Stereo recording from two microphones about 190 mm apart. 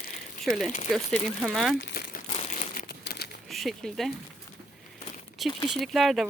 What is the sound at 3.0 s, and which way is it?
Crumpling, 55° left (ahead or behind).